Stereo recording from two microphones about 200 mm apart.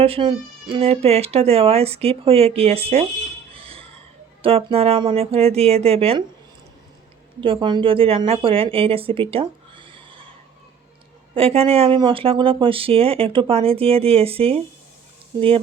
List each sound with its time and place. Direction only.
0.0 s speech: 25° right (ahead or behind)
3.5 s a sound: 30° right (ahead or behind)
4.4 s speech: 30° right (ahead or behind)
7.4 s speech: 25° right (ahead or behind)
11.3 s speech: 30° right (ahead or behind)